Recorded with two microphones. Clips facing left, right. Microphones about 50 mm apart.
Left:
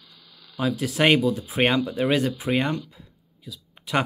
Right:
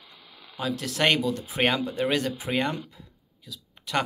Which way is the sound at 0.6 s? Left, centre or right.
Centre.